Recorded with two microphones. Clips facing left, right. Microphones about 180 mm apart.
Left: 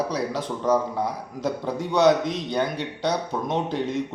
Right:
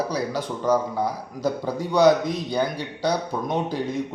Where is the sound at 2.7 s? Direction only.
25° left (ahead or behind).